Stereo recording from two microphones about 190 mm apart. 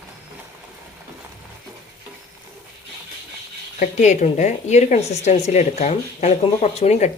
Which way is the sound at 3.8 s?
40° left (ahead or behind).